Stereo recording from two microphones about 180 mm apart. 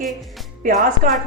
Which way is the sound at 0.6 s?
45° right (ahead or behind).